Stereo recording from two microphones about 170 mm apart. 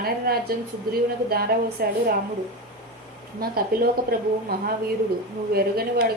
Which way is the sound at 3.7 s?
60° right (ahead or behind).